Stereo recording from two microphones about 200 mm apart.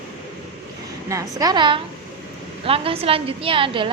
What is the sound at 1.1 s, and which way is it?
A woman's voice, 15° right (ahead or behind).